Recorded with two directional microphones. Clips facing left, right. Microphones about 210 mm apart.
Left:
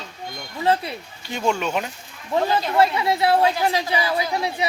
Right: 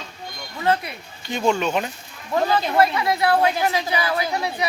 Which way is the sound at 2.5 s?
25° left (ahead or behind).